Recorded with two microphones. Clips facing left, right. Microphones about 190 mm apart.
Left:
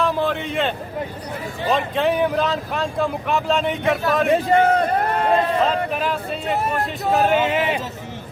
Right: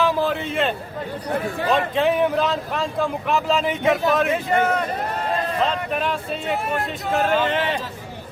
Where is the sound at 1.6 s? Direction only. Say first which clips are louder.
Left 1 dB; centre (ahead or behind).